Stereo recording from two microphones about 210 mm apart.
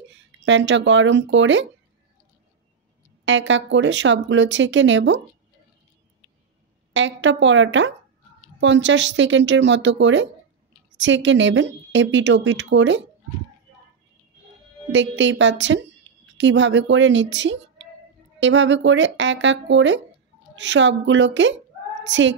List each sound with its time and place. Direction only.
0.5 s speech: 60° right (ahead or behind)
3.3 s speech: 65° right (ahead or behind)
6.9 s speech: 60° right (ahead or behind)
14.9 s a child's voice: 60° right (ahead or behind)